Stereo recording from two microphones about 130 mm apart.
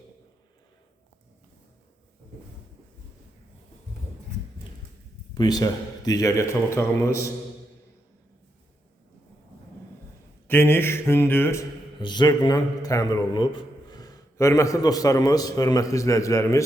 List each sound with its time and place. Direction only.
5.3 s a man's voice: 35° left (ahead or behind)
10.5 s speech: 15° left (ahead or behind)
11.9 s a man's voice: 35° left (ahead or behind)
13.3 s a man's voice: 35° left (ahead or behind)